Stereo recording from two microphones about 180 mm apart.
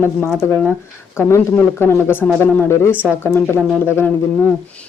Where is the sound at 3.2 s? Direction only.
15° left (ahead or behind).